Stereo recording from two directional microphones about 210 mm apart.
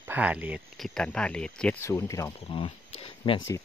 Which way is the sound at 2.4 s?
25° left (ahead or behind).